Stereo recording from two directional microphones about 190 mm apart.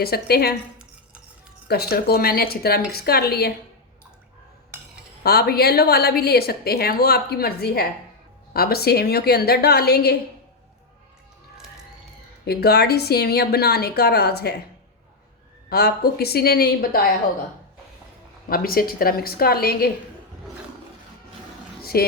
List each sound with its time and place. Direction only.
0.0 s a woman's voice: 55° left (ahead or behind)
1.6 s a woman's voice: 55° left (ahead or behind)
5.2 s a woman's voice: 55° left (ahead or behind)
12.5 s a woman's voice: 55° left (ahead or behind)
15.7 s a woman's voice: 55° left (ahead or behind)
18.4 s a woman's voice: 50° left (ahead or behind)
21.9 s a woman's voice: 55° left (ahead or behind)